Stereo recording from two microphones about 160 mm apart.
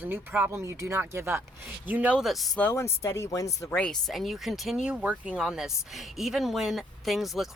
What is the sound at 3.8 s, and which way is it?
Speech, 5° left (ahead or behind).